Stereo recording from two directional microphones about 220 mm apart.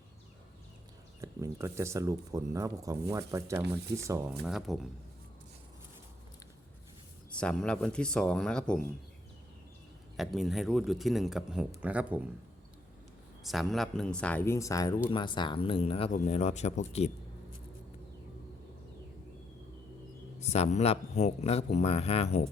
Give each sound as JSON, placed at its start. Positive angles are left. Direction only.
{"t": 1.2, "sound": "speech", "side_deg": -15}
{"t": 4.4, "sound": "speech", "side_deg": 0}
{"t": 7.3, "sound": "speech", "side_deg": 5}
{"t": 10.2, "sound": "speech", "side_deg": 0}
{"t": 13.4, "sound": "speech", "side_deg": 0}
{"t": 20.4, "sound": "speech", "side_deg": 30}